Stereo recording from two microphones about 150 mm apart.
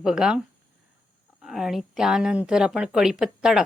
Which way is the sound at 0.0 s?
5° right (ahead or behind).